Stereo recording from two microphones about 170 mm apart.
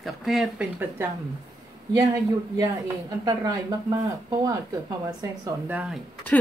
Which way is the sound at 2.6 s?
20° right (ahead or behind).